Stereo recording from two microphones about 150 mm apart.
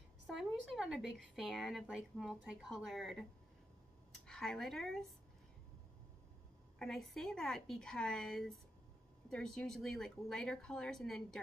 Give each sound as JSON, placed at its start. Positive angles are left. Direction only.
{"t": 0.3, "sound": "speech", "side_deg": 0}
{"t": 4.3, "sound": "speech", "side_deg": 0}
{"t": 6.8, "sound": "speech", "side_deg": 5}